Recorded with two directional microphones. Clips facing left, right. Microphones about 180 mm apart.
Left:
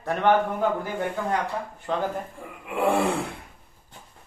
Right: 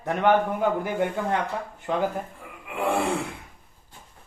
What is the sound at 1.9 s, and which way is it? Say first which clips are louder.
Speech: right 1 dB; 15° right (ahead or behind).